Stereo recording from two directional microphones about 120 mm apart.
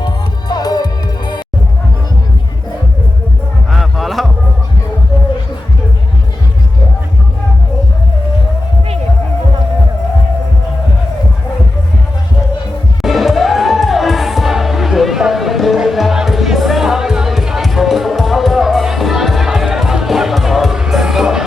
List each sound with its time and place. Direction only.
0.0 s music: 35° left (ahead or behind)
3.7 s music: centre (ahead or behind)
13.0 s music: centre (ahead or behind)